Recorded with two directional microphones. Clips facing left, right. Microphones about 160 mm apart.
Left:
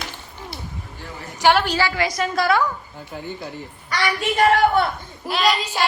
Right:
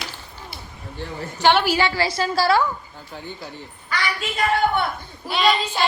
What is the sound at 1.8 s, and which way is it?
Speech, 30° right (ahead or behind).